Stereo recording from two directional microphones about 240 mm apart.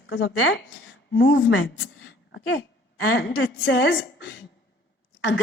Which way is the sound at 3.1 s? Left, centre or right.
Left.